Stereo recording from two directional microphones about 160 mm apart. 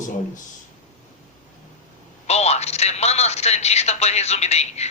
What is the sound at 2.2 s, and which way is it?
Telephone, 40° left (ahead or behind).